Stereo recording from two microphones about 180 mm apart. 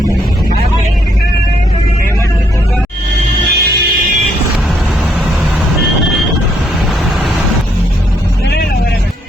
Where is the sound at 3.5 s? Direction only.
60° right (ahead or behind).